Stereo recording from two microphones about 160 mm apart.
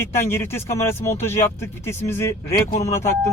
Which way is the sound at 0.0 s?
15° left (ahead or behind).